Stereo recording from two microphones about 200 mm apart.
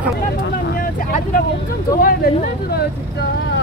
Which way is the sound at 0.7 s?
45° left (ahead or behind).